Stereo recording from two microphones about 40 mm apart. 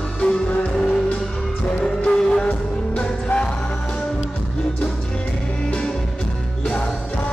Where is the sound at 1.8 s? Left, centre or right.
Centre.